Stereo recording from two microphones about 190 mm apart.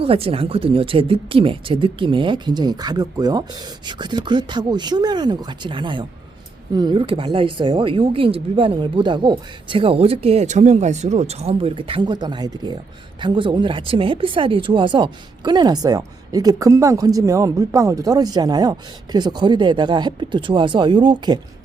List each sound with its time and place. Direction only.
0.0 s speech: 30° right (ahead or behind)